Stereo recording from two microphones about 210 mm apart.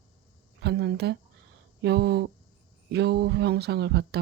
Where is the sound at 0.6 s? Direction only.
55° right (ahead or behind).